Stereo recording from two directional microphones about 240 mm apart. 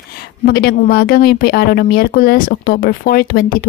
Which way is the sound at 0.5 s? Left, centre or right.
Left.